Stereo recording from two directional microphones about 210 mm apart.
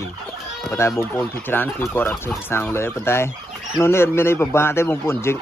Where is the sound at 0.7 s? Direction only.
15° left (ahead or behind).